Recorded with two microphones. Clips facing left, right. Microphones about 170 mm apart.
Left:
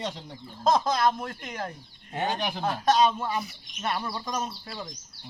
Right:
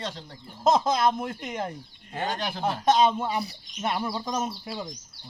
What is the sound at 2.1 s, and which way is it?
Speech, 15° left (ahead or behind).